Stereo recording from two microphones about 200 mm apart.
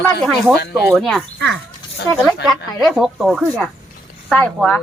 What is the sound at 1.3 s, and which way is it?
Speech, 60° right (ahead or behind).